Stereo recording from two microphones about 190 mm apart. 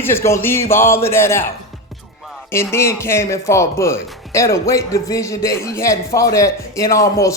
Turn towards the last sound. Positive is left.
turn(degrees=15)  # may be behind; listen again after turning